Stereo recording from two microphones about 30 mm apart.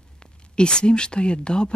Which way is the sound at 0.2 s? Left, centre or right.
Left.